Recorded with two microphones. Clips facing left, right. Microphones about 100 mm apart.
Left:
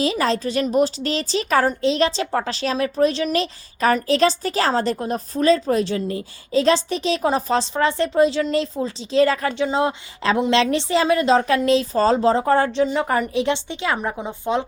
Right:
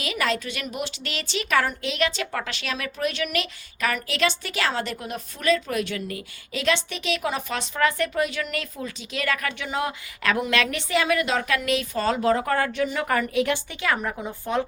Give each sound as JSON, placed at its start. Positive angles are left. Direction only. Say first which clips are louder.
{"t": 0.0, "sound": "a woman's voice", "louder": "left 6 dB", "side_deg": 30}